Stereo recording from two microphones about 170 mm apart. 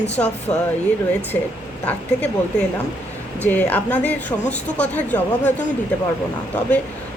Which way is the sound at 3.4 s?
10° left (ahead or behind).